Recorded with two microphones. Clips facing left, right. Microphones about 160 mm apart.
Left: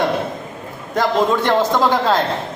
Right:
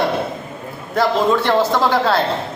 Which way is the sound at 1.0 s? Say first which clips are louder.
Right 1 dB; 15° left (ahead or behind).